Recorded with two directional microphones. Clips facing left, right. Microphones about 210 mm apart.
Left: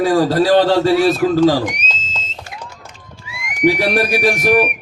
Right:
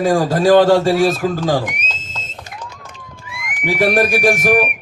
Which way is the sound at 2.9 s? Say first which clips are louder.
Right 2 dB; 55° right (ahead or behind).